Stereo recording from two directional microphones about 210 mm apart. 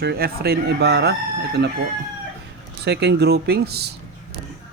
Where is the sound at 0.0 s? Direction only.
50° right (ahead or behind).